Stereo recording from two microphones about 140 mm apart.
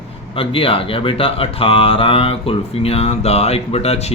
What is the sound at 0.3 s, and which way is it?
Speech, 40° left (ahead or behind).